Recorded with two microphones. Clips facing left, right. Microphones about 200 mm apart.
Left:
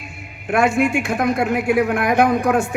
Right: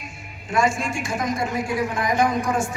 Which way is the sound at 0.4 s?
60° left (ahead or behind).